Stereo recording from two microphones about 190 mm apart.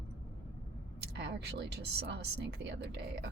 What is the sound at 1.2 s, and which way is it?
Speech, 60° right (ahead or behind).